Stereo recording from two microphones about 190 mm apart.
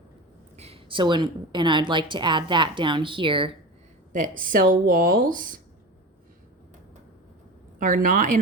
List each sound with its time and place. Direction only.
0.5 s a woman's voice: 30° right (ahead or behind)
4.1 s speech: 45° right (ahead or behind)
7.8 s speech: 45° right (ahead or behind)